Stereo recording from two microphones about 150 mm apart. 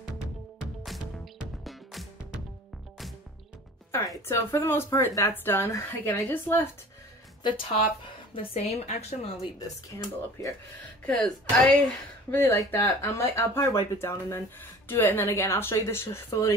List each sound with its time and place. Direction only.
0.6 s music: centre (ahead or behind)
3.9 s speech: 20° left (ahead or behind)
7.4 s a woman's voice: 35° left (ahead or behind)
11.1 s speech: 5° left (ahead or behind)
12.3 s speech: 15° left (ahead or behind)